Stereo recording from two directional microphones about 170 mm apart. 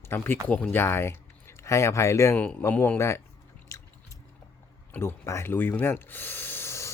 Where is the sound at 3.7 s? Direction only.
20° left (ahead or behind).